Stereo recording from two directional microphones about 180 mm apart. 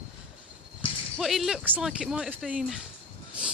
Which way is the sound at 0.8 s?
30° left (ahead or behind).